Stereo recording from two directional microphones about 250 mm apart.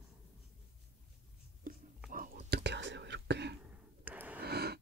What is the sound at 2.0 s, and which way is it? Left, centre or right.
Whispering, right.